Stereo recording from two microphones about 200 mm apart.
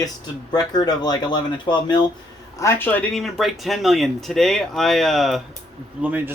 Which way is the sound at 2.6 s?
10° left (ahead or behind).